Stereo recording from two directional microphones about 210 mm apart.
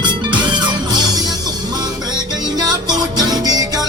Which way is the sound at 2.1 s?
20° right (ahead or behind).